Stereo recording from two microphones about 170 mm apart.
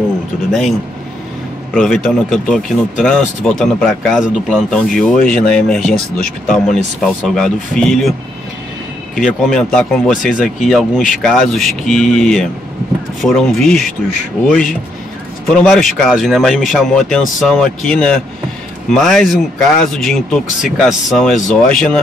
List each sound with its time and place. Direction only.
0.5 s speech: centre (ahead or behind)
9.2 s speech: 5° left (ahead or behind)
15.4 s speech: 5° left (ahead or behind)